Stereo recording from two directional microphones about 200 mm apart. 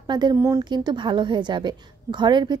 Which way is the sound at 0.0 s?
20° right (ahead or behind).